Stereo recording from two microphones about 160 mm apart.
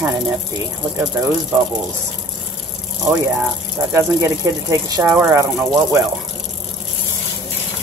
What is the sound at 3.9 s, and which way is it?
Speech, 20° right (ahead or behind).